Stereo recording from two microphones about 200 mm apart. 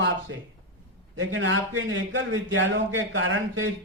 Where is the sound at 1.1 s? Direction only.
75° right (ahead or behind).